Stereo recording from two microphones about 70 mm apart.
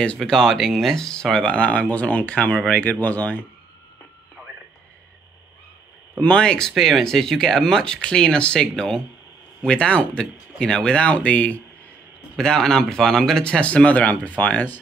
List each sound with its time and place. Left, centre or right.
0.2 s speech: centre; by 3.4 s left
4.4 s radio: centre
6.1 s speech: centre
12.4 s speech: centre; by 14.8 s left